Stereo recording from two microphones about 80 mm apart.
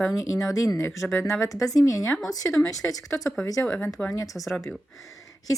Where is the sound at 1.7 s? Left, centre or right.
Left.